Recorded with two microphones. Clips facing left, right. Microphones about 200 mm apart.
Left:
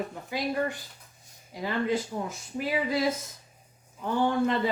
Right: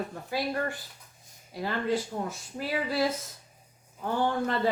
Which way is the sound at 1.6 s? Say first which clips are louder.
Left 1 dB; 15° left (ahead or behind).